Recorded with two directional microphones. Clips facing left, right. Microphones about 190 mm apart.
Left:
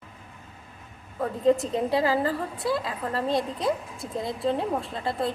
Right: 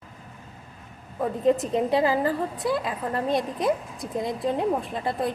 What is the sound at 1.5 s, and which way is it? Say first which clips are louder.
A woman's voice: even; 20° right (ahead or behind).